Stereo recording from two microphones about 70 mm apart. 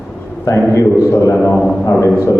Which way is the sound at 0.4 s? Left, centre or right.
Left.